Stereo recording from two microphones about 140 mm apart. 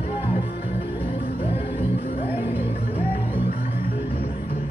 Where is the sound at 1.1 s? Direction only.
45° left (ahead or behind).